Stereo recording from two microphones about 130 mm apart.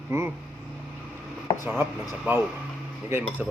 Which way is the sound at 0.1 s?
20° right (ahead or behind).